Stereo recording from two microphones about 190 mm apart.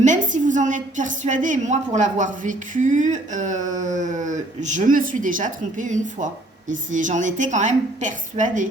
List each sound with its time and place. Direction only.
0.0 s a woman's voice: 40° right (ahead or behind)